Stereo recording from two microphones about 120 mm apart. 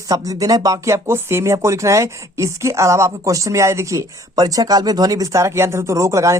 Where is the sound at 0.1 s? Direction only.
30° right (ahead or behind).